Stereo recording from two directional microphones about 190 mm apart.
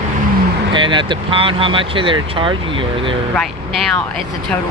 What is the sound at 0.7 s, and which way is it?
Speech, 25° right (ahead or behind).